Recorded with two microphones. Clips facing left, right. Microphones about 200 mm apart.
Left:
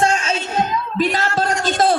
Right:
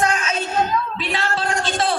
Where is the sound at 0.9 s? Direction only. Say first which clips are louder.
Left 6 dB; 45° left (ahead or behind).